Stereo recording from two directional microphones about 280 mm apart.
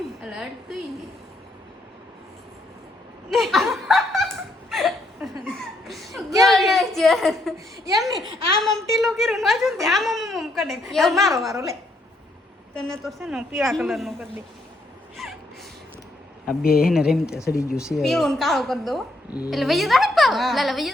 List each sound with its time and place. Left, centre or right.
0.2 s a woman's voice: centre
3.2 s laughter: centre
5.5 s chuckle: centre
6.4 s a sound: centre
8.1 s a woman's voice: centre
11.5 s a woman's voice: centre
13.1 s a woman's voice: centre
16.6 s speech: left
16.9 s a woman's voice: centre